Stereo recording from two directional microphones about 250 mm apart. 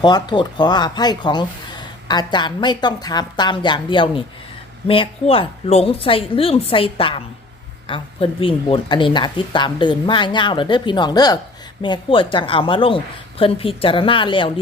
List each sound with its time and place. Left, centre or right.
0.0 s speech: centre